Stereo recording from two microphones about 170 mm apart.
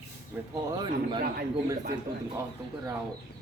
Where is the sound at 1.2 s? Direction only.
60° right (ahead or behind).